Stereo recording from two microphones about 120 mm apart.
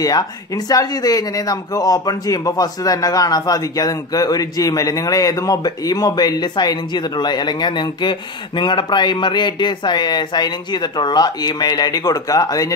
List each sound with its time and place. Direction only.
0.0 s speech: 30° left (ahead or behind)